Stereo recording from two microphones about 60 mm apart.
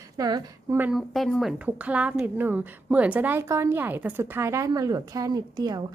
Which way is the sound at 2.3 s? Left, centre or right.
Right.